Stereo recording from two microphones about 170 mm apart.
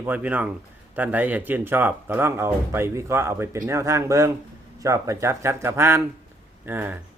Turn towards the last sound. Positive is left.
turn(degrees=-10)  # may be behind; listen again after turning